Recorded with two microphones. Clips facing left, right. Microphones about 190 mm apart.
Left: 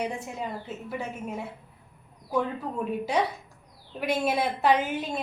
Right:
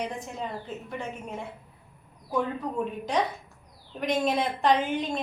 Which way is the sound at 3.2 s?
10° left (ahead or behind).